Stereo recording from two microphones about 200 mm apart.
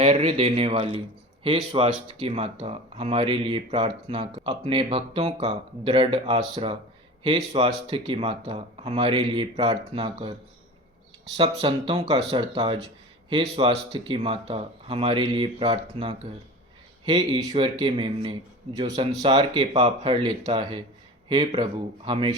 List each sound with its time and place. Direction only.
0.0 s speech: 30° right (ahead or behind)
11.3 s speech: 25° right (ahead or behind)